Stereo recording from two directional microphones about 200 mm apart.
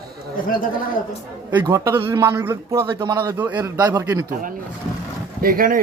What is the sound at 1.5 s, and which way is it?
A man's voice, 15° right (ahead or behind).